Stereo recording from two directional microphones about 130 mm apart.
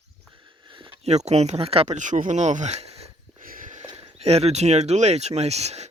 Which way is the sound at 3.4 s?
90° right.